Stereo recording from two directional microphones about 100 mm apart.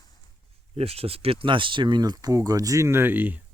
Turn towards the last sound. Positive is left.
turn(degrees=-20)  # may be behind; listen again after turning